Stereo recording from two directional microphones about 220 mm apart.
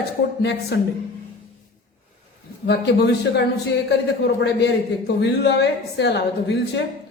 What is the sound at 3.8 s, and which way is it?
A woman's voice, 50° left (ahead or behind).